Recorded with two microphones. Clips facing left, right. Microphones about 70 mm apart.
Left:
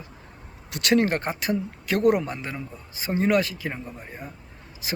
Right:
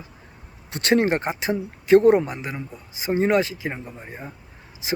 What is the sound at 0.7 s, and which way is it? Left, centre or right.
Speech, right.